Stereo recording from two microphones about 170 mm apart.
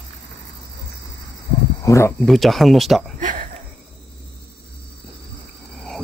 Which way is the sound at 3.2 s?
50° right (ahead or behind).